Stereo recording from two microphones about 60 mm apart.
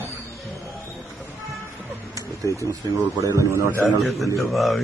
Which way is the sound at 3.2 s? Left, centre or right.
Right.